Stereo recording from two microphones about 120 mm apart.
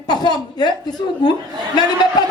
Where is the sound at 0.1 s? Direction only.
35° left (ahead or behind).